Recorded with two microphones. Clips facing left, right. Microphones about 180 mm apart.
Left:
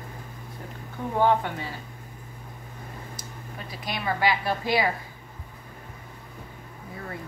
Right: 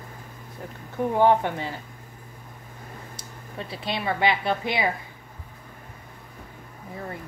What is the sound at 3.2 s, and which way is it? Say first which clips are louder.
Speech: right 3 dB; 30° right (ahead or behind).